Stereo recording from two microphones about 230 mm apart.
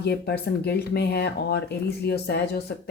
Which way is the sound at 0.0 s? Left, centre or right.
Left.